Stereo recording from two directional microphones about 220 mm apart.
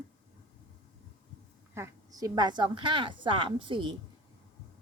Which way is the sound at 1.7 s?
15° right (ahead or behind).